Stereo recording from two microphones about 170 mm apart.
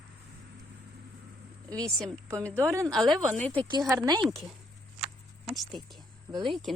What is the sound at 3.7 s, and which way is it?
Speech, 20° right (ahead or behind).